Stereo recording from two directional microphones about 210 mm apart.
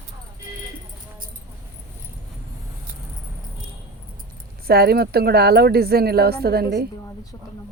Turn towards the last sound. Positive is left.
turn(degrees=-50)  # may be behind; listen again after turning